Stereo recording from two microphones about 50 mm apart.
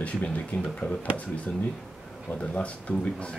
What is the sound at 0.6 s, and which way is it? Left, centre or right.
Speech, centre.